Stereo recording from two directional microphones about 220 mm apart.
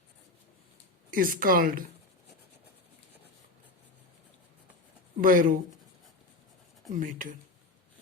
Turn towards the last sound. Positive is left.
turn(degrees=-35)  # may be behind; listen again after turning